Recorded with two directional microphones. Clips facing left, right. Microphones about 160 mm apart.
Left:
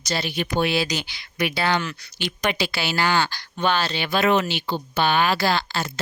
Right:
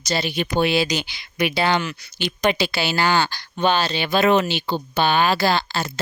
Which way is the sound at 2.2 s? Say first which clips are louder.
Right 4 dB; 30° right (ahead or behind).